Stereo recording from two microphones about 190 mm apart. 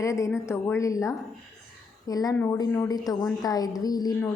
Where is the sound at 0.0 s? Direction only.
15° left (ahead or behind).